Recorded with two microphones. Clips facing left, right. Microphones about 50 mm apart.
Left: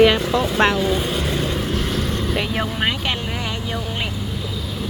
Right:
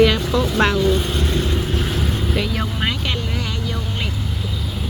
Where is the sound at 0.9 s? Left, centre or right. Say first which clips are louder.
Right 1 dB; centre.